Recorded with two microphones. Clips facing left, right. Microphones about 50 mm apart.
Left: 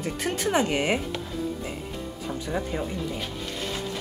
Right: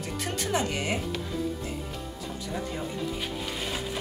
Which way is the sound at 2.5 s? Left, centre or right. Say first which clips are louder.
Left 4 dB; left.